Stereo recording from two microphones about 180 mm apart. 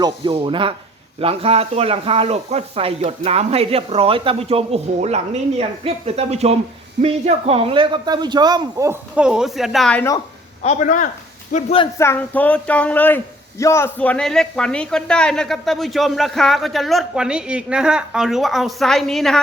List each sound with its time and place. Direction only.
0.0 s speech: 25° right (ahead or behind)
9.1 s speech: 5° right (ahead or behind)
10.6 s a man's voice: 40° left (ahead or behind)
11.5 s speech: 30° left (ahead or behind)
11.9 s speech: 10° left (ahead or behind)